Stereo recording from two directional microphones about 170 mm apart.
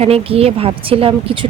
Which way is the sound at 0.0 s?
35° right (ahead or behind).